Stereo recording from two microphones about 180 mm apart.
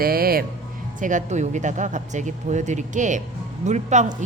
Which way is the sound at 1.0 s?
45° right (ahead or behind).